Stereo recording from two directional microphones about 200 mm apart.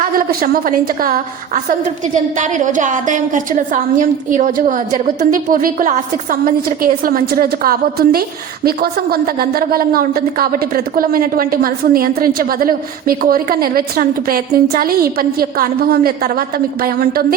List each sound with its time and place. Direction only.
0.0 s a woman's voice: 45° right (ahead or behind)